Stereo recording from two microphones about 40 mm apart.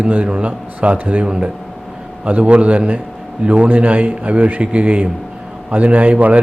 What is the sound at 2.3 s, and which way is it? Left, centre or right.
A man's voice, right.